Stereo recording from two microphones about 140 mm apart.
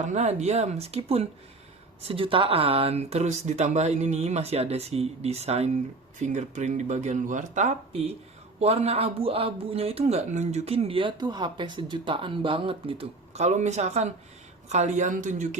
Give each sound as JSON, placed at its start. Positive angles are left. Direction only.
{"t": 0.1, "sound": "speech", "side_deg": -55}